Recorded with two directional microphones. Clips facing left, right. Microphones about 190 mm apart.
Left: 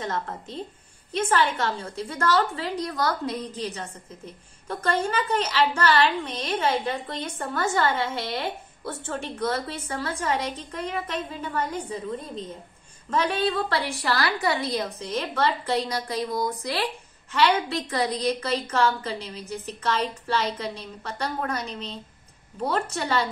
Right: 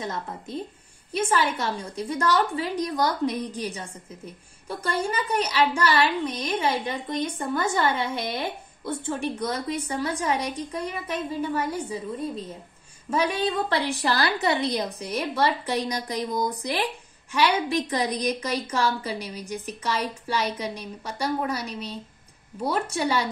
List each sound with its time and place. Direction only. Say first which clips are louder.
0.0 s a woman's voice: left 2 dB; 10° right (ahead or behind)
13.1 s a woman's voice: even; 15° right (ahead or behind)